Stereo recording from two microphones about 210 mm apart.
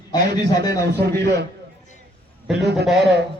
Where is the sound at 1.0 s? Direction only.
50° right (ahead or behind).